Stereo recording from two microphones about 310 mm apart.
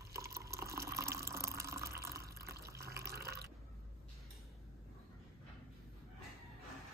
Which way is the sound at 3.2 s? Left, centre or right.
Right.